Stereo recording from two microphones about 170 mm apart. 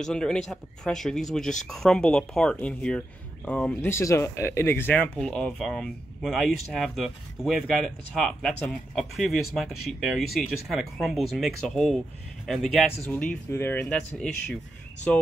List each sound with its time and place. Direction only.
0.0 s speech: 5° left (ahead or behind)